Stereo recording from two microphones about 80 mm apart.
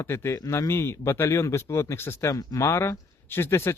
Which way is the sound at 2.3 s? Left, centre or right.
Left.